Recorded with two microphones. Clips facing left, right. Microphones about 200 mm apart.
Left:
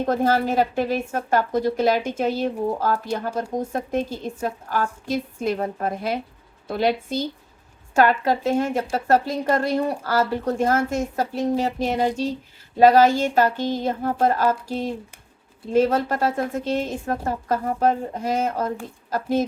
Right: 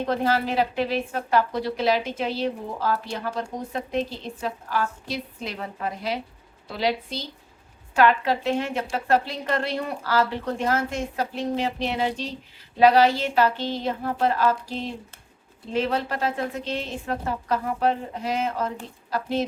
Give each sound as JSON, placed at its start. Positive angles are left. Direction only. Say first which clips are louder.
{"t": 0.0, "sound": "a woman's voice", "louder": "left 3 dB", "side_deg": 45}